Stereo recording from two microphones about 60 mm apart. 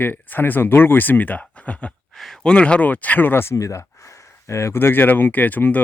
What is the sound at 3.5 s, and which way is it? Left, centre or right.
Speech, left.